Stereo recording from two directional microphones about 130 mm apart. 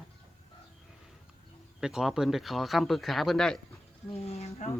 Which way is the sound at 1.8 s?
5° right (ahead or behind).